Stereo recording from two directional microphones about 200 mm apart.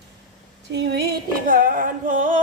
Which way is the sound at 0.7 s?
60° right (ahead or behind).